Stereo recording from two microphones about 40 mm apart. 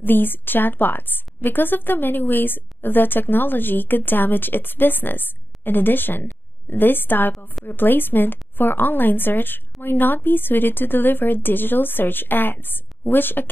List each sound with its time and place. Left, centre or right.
0.0 s a woman's voice: left